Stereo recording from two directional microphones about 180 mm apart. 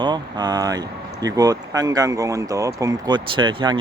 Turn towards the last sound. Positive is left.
turn(degrees=-25)  # may be behind; listen again after turning